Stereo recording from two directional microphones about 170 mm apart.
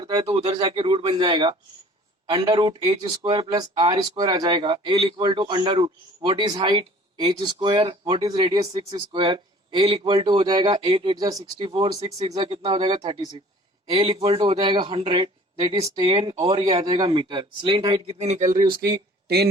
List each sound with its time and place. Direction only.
0.0 s a man's voice: 30° right (ahead or behind); by 18.5 s 45° right (ahead or behind)